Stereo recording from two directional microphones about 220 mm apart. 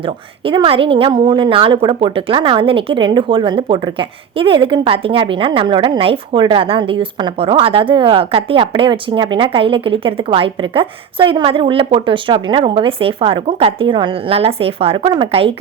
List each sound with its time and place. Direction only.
0.4 s a woman's voice: 25° right (ahead or behind)